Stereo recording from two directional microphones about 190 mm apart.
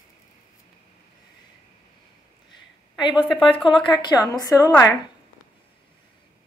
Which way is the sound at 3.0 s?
25° left (ahead or behind).